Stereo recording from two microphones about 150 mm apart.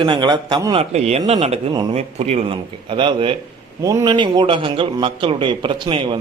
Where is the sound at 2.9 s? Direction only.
35° right (ahead or behind).